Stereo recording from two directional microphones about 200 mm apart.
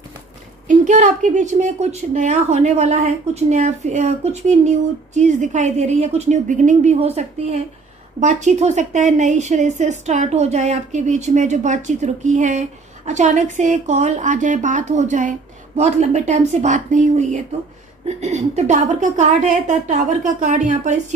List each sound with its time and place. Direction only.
0.7 s a woman's voice: 40° right (ahead or behind)